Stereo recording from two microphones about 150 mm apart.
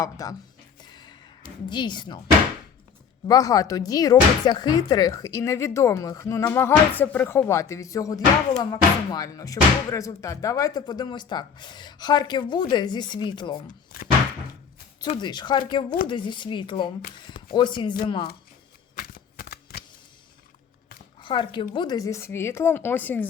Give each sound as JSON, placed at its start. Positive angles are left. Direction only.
{"t": 0.0, "sound": "speech", "side_deg": 20}
{"t": 0.8, "sound": "a sound", "side_deg": 30}
{"t": 3.2, "sound": "speech", "side_deg": 25}
{"t": 13.7, "sound": "speech", "side_deg": 80}
{"t": 15.2, "sound": "speech", "side_deg": 30}
{"t": 18.9, "sound": "shuffling cards", "side_deg": 70}
{"t": 21.2, "sound": "speech", "side_deg": 35}